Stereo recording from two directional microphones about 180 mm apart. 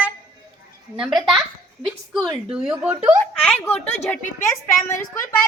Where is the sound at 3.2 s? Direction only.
5° left (ahead or behind).